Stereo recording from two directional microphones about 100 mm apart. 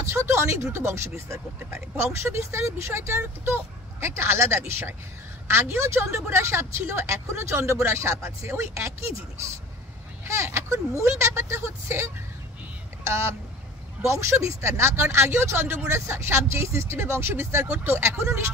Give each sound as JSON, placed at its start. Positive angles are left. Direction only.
{"t": 0.0, "sound": "speech", "side_deg": -25}